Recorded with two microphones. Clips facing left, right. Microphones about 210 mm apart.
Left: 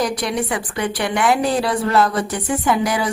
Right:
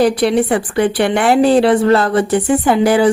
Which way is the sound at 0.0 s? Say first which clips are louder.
Right 9 dB; 30° right (ahead or behind).